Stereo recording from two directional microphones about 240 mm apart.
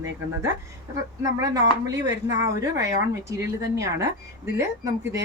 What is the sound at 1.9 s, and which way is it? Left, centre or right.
Speech, centre.